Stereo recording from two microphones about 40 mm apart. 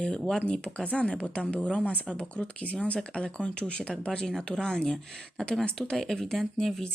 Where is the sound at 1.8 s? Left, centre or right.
Left.